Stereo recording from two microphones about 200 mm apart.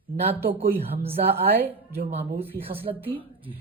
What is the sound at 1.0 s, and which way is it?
Speech, 30° right (ahead or behind).